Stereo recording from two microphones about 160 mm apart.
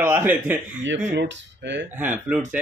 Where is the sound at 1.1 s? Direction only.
90° right.